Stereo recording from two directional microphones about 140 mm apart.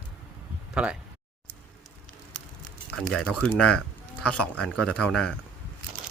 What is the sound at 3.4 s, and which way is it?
Speech, 10° left (ahead or behind).